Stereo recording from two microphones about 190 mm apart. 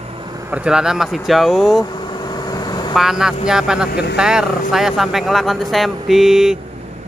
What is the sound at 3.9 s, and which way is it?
Speech, 60° left (ahead or behind).